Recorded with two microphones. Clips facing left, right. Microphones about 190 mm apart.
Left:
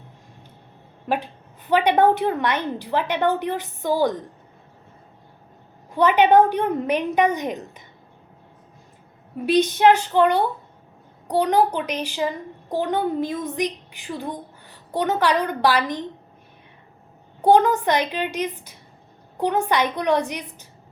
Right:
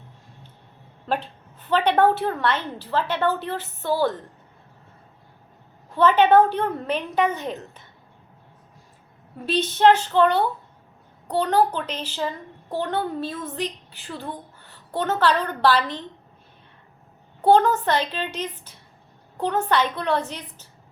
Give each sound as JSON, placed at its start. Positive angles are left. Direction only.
{"t": 1.0, "sound": "a woman's voice", "side_deg": 10}
{"t": 5.9, "sound": "a woman's voice", "side_deg": 10}
{"t": 9.5, "sound": "a woman's voice", "side_deg": 15}
{"t": 17.4, "sound": "a woman's voice", "side_deg": 15}